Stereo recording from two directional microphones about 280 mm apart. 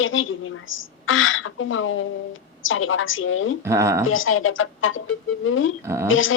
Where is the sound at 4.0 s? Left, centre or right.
Left.